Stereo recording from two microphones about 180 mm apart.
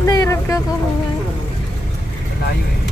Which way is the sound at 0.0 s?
20° left (ahead or behind).